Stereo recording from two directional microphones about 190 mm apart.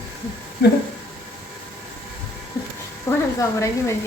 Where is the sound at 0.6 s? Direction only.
55° left (ahead or behind).